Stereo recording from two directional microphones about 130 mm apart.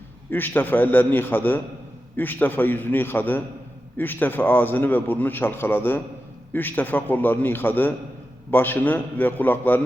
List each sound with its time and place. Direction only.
0.3 s a man's voice: 15° left (ahead or behind)